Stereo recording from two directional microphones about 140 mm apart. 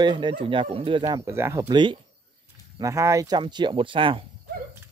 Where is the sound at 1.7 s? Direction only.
35° right (ahead or behind).